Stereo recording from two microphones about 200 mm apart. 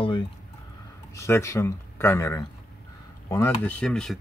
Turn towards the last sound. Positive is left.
turn(degrees=5)  # may be behind; listen again after turning